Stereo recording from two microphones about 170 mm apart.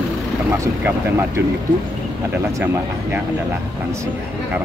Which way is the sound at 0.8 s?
15° right (ahead or behind).